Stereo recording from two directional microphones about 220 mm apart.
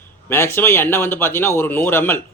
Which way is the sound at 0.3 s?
10° left (ahead or behind).